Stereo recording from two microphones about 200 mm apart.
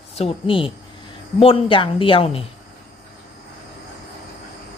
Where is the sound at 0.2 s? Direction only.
25° left (ahead or behind).